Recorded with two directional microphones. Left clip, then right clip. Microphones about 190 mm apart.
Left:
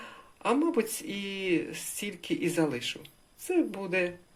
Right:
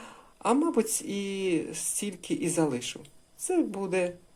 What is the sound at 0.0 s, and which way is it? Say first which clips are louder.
Speech: right 2 dB; 15° right (ahead or behind).